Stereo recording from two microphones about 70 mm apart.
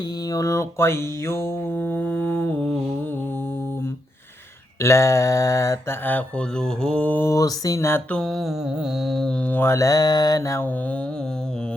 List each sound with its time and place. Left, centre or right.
0.3 s mantra: left
4.8 s mantra: left
5.9 s mantra: left
6.6 s mantra: centre
7.3 s mantra: left
7.8 s mantra: left
8.1 s mantra: centre
9.6 s mantra: left